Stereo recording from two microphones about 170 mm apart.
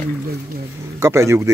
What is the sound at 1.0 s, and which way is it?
Speech, 15° right (ahead or behind).